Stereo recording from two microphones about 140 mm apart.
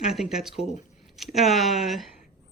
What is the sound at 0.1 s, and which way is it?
Speech, 5° right (ahead or behind).